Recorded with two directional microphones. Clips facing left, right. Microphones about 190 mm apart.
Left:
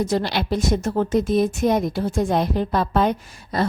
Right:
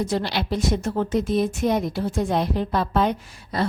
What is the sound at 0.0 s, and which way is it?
A woman's voice, 45° left (ahead or behind).